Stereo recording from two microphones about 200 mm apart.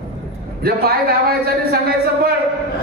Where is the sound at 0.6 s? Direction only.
50° right (ahead or behind).